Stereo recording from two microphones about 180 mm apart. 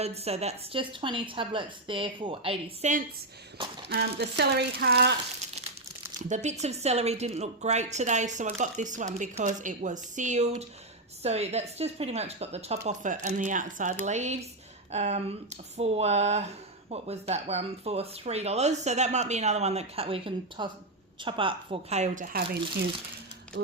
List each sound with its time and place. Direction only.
0.0 s a woman's voice: 35° right (ahead or behind)
3.8 s speech: 65° right (ahead or behind)
6.1 s speech: 45° right (ahead or behind)
23.6 s speech: 70° right (ahead or behind)